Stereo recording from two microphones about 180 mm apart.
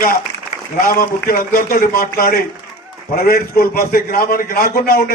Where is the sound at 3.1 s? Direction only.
55° left (ahead or behind).